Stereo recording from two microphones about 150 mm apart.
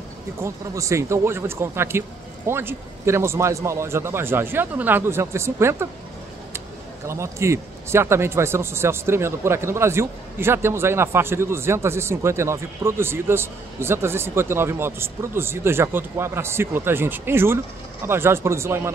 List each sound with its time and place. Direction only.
0.4 s a man's voice: 20° right (ahead or behind)
7.1 s a man's voice: 20° right (ahead or behind)